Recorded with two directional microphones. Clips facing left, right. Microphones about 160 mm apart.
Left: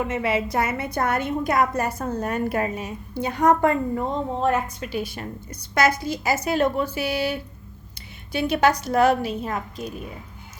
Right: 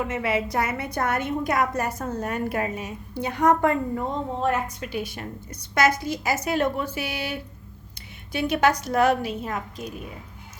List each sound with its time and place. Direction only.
0.1 s a woman's voice: 25° left (ahead or behind)